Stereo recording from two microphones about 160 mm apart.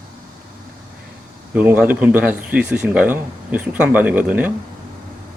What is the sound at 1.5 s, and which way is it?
Speech, 10° right (ahead or behind).